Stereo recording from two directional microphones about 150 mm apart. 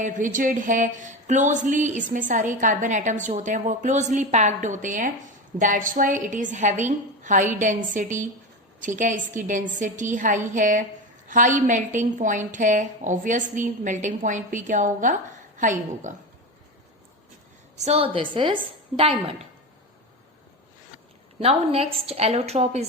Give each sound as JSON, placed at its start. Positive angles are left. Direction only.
{"t": 0.0, "sound": "speech", "side_deg": -55}
{"t": 17.7, "sound": "a woman's voice", "side_deg": -45}
{"t": 21.4, "sound": "a woman's voice", "side_deg": -40}